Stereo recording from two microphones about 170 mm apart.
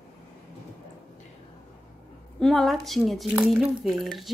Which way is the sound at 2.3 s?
Centre (ahead or behind).